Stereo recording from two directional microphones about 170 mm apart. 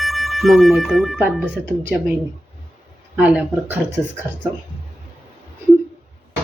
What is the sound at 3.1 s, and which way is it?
Speech, 10° right (ahead or behind).